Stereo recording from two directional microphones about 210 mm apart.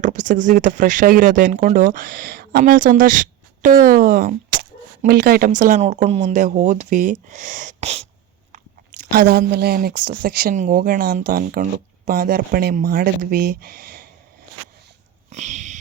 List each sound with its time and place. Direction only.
0.0 s speech: 35° right (ahead or behind)
8.5 s biting: 35° right (ahead or behind)
9.5 s speech: 50° right (ahead or behind)
15.3 s a sound: 35° right (ahead or behind)